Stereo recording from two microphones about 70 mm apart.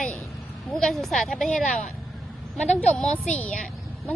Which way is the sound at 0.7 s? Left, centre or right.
Centre.